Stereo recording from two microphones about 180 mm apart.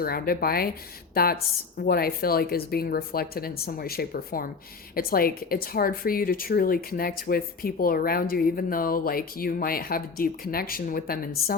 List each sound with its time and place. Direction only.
0.0 s speech: 55° left (ahead or behind)